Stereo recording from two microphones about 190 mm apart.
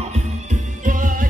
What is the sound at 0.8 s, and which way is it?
Music, 45° right (ahead or behind).